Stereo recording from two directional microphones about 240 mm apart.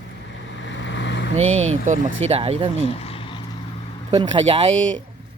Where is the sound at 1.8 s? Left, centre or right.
Right.